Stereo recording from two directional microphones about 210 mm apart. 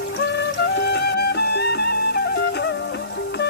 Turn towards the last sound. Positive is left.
turn(degrees=55)  # may be behind; listen again after turning